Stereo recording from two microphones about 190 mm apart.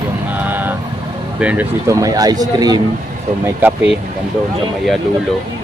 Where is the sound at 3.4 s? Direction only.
10° right (ahead or behind).